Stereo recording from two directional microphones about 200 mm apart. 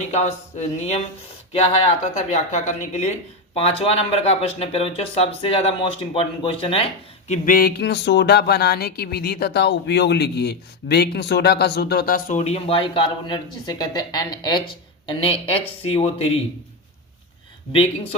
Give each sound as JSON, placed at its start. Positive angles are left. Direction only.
{"t": 0.1, "sound": "speech", "side_deg": 35}
{"t": 2.1, "sound": "speech", "side_deg": 35}
{"t": 7.3, "sound": "speech", "side_deg": 45}
{"t": 17.7, "sound": "speech", "side_deg": 25}